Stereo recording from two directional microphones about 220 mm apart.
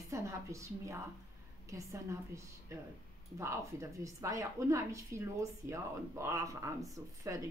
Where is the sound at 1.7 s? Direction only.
15° right (ahead or behind).